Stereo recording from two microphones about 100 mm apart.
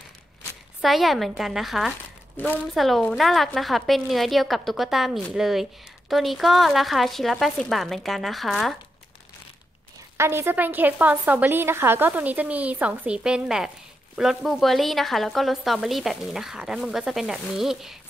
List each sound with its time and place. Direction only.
0.8 s a woman's voice: centre (ahead or behind)
10.1 s a woman's voice: 25° right (ahead or behind); by 17.9 s 5° right (ahead or behind)